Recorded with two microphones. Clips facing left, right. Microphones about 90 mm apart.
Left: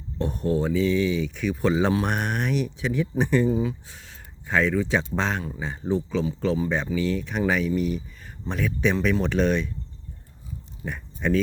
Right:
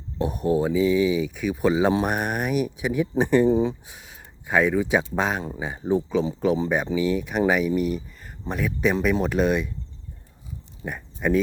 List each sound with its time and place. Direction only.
0.2 s speech: 10° right (ahead or behind)
3.5 s speech: 25° right (ahead or behind)
3.8 s speech: 10° right (ahead or behind)
10.8 s speech: 10° right (ahead or behind)